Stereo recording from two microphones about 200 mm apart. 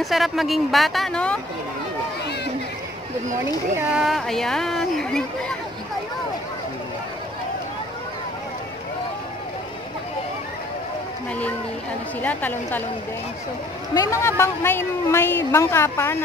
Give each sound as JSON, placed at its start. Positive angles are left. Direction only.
{"t": 0.0, "sound": "speech", "side_deg": 0}
{"t": 3.9, "sound": "speech", "side_deg": 0}
{"t": 12.2, "sound": "a woman's voice", "side_deg": 10}
{"t": 13.9, "sound": "a woman's voice", "side_deg": 15}